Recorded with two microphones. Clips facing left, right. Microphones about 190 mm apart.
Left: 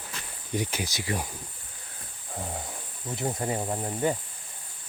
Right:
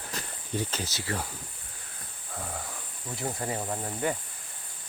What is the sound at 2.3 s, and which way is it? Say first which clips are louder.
Speech: left 2 dB; 25° left (ahead or behind).